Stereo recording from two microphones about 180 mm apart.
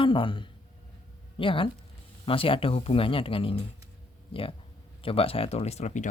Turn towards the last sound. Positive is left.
turn(degrees=40)  # may be behind; listen again after turning